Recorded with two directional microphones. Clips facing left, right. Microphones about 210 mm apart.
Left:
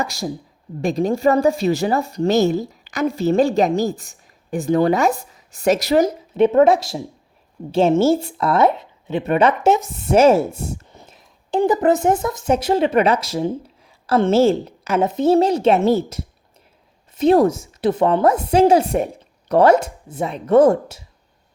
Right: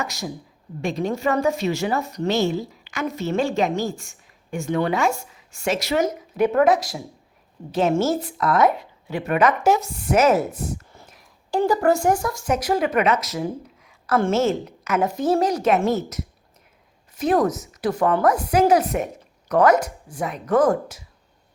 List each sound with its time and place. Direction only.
0.0 s a woman's voice: 35° left (ahead or behind)